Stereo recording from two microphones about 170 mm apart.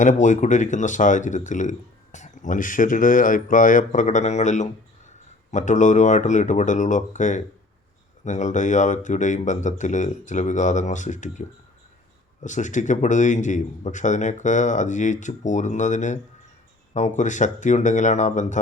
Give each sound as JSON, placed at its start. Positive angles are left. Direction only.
{"t": 0.0, "sound": "a man's voice", "side_deg": 45}